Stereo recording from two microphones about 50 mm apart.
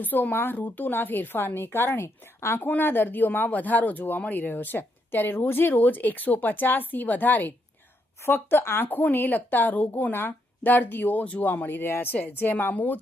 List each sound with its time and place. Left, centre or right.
0.0 s a woman's voice: left
2.6 s speech: left
8.3 s speech: left